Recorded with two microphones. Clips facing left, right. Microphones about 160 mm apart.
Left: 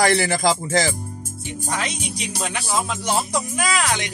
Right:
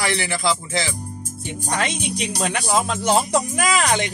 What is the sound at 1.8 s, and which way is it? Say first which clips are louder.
Speech: right 4 dB; 60° right (ahead or behind).